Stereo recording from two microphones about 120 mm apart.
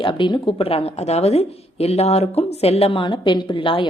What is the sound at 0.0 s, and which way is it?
A woman's voice, 45° left (ahead or behind).